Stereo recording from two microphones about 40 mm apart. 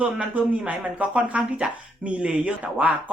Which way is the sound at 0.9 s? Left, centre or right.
Right.